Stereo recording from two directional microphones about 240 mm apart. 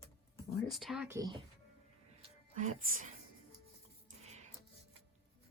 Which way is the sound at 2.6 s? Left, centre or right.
Right.